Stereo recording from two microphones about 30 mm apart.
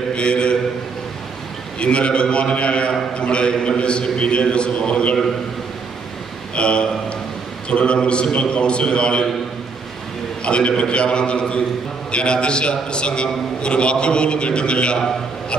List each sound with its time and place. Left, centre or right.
0.1 s a man's voice: left
1.8 s a man's voice: left
6.5 s a man's voice: left
10.4 s a man's voice: left